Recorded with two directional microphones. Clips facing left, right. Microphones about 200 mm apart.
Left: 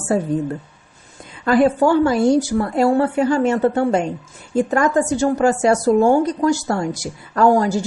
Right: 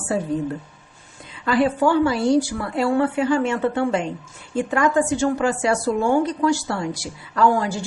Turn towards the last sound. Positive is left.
turn(degrees=40)  # may be behind; listen again after turning